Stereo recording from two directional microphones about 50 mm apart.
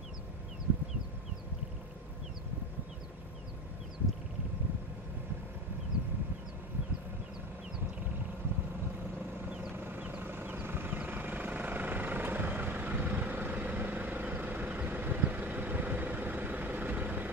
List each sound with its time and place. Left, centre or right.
9.8 s vehicle: right